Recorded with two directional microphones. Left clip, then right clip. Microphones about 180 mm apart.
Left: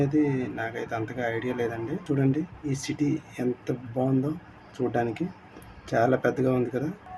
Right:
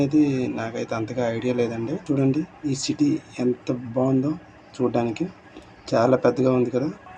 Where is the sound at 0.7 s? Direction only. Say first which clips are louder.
Right 4 dB; 15° left (ahead or behind).